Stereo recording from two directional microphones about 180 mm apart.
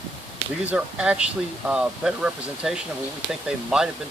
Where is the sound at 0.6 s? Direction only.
5° right (ahead or behind).